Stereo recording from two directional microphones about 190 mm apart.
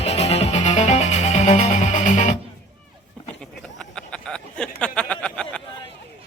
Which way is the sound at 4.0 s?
5° left (ahead or behind).